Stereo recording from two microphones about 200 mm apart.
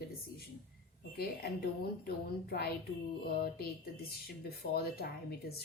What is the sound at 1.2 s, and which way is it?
A woman's voice, 50° left (ahead or behind).